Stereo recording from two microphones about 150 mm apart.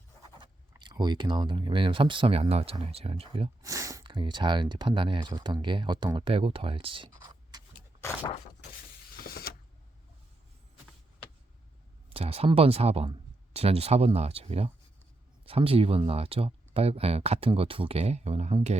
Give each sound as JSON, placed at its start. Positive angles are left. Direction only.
{"t": 0.8, "sound": "speech", "side_deg": -30}
{"t": 3.6, "sound": "speech", "side_deg": -20}
{"t": 9.1, "sound": "power windows", "side_deg": 85}
{"t": 12.1, "sound": "speech", "side_deg": -40}